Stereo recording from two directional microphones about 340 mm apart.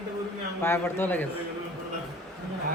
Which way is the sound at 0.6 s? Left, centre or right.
Centre.